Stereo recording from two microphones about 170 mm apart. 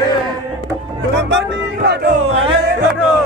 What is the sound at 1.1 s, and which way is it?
Music, 85° right.